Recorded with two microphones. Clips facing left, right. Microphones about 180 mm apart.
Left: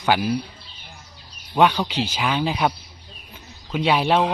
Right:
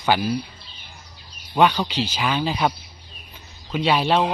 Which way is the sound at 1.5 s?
10° left (ahead or behind).